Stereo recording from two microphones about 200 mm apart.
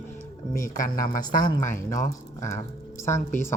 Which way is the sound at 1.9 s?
15° left (ahead or behind).